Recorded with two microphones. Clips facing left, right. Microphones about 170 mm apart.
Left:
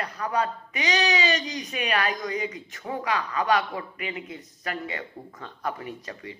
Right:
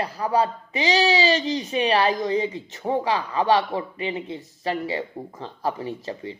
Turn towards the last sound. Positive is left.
turn(degrees=-30)  # may be behind; listen again after turning